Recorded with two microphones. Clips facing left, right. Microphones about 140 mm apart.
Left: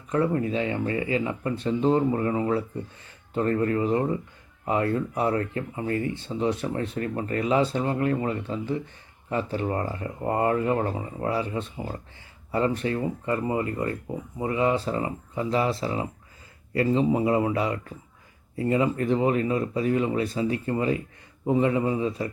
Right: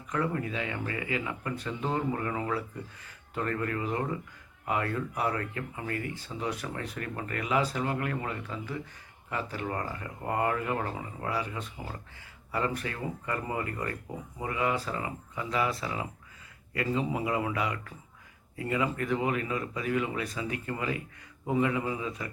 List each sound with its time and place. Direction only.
0.1 s speech: 30° left (ahead or behind)